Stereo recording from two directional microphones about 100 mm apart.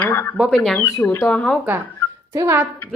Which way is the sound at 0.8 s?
25° left (ahead or behind).